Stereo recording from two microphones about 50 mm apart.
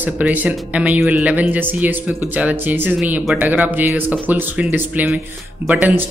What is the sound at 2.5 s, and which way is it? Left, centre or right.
Speech, right.